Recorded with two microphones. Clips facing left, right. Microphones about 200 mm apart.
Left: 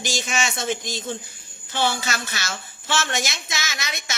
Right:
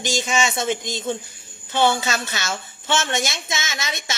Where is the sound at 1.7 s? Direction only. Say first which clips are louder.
Right 5 dB; 20° right (ahead or behind).